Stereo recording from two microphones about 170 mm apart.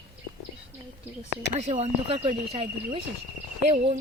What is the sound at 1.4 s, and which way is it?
Speech, 40° right (ahead or behind).